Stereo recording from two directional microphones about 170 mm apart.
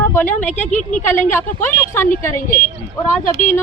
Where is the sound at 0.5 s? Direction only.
45° left (ahead or behind).